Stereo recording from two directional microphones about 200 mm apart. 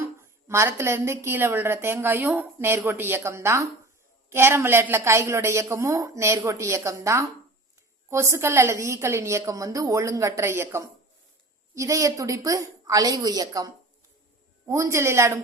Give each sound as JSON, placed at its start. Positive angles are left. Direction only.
{"t": 0.0, "sound": "a woman's voice", "side_deg": -15}